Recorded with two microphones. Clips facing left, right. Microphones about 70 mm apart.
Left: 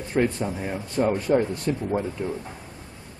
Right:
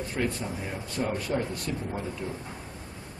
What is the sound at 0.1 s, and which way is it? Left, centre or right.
Speech, left.